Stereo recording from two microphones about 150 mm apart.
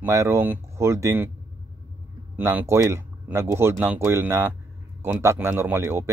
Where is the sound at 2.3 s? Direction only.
15° right (ahead or behind).